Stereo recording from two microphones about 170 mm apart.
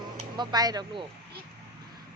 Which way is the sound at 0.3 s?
25° right (ahead or behind).